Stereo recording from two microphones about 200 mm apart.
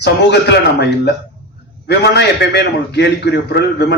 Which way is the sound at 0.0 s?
60° left (ahead or behind).